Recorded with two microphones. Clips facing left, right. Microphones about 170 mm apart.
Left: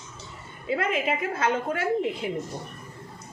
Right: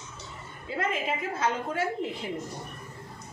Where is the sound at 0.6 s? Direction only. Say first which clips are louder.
Left 4 dB; 65° left (ahead or behind).